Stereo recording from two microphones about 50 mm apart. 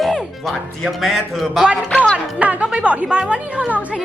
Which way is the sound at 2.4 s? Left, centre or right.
Right.